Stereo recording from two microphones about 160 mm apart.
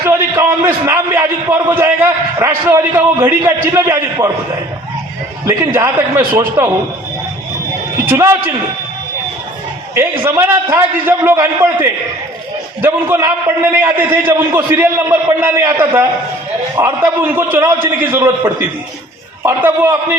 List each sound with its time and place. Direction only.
0.0 s a man's voice: 15° right (ahead or behind)
5.5 s a man's voice: 20° right (ahead or behind)
8.0 s a man's voice: 15° right (ahead or behind)
9.9 s a man's voice: 15° right (ahead or behind)
19.4 s a man's voice: 15° right (ahead or behind)